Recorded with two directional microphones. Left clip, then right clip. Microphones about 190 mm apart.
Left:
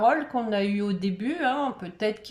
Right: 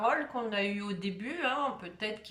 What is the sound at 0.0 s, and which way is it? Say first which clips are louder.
Speech: left 7 dB; 30° left (ahead or behind).